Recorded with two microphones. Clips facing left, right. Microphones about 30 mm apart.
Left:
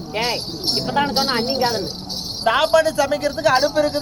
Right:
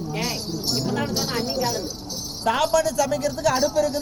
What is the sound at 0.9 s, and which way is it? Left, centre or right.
Speech, left.